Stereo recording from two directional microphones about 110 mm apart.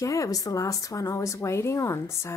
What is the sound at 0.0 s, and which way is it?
Speech, 30° left (ahead or behind).